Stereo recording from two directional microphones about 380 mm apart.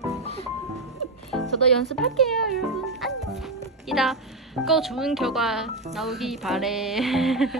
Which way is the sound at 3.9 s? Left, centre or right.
Centre.